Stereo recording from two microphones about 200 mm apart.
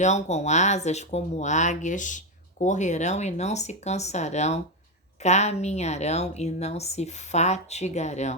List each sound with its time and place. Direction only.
0.0 s speech: 35° left (ahead or behind)